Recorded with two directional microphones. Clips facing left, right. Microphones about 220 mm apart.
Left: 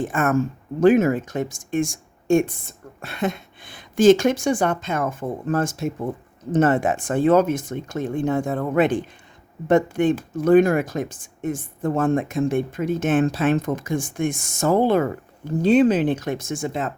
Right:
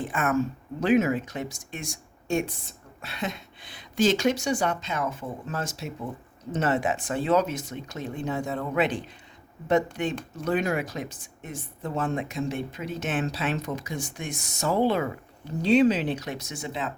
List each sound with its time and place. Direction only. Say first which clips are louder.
0.0 s speech: left 5 dB; 45° left (ahead or behind)